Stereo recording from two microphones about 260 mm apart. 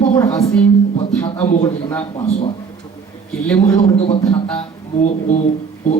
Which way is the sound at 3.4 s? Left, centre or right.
Centre.